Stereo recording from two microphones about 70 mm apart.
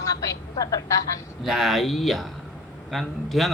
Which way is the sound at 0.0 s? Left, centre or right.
Left.